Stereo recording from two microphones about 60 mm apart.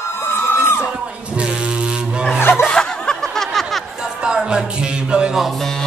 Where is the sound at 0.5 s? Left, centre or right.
Left.